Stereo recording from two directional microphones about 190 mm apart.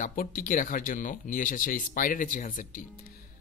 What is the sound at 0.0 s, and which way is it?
Speech, 45° left (ahead or behind).